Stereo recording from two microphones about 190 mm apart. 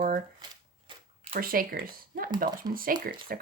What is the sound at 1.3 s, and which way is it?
Speech, 50° right (ahead or behind).